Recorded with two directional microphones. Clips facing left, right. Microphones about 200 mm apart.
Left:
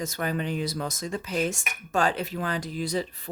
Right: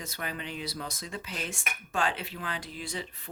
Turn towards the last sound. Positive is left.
turn(degrees=40)  # may be behind; listen again after turning